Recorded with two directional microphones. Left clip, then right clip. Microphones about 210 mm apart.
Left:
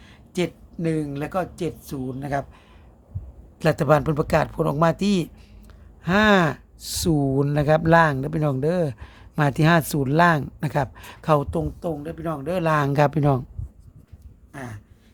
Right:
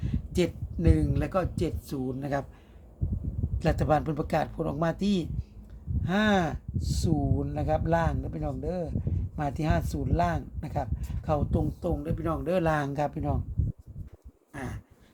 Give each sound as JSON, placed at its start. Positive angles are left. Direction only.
{"t": 0.0, "sound": "speech", "side_deg": 5}
{"t": 3.6, "sound": "speech", "side_deg": 30}
{"t": 11.8, "sound": "speech", "side_deg": 10}
{"t": 12.9, "sound": "speech", "side_deg": 40}
{"t": 14.5, "sound": "a sound", "side_deg": 10}